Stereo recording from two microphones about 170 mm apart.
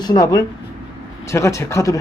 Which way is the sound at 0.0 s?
25° left (ahead or behind).